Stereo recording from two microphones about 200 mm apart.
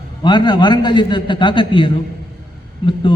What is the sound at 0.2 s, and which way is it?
A man's voice, 20° left (ahead or behind).